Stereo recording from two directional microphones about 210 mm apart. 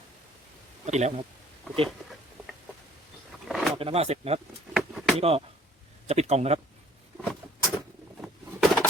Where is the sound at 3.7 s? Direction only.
30° right (ahead or behind).